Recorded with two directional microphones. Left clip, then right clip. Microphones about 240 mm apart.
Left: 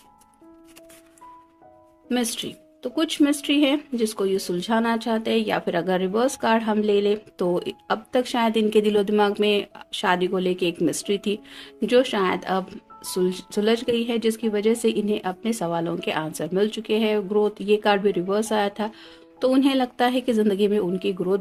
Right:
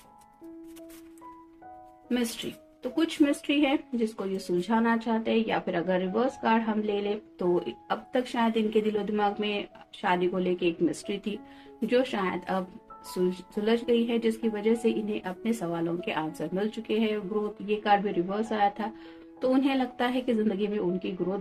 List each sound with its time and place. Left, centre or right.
2.0 s speech: left
13.7 s speech: left